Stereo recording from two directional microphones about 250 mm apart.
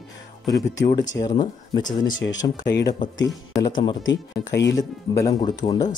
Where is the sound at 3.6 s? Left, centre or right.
Centre.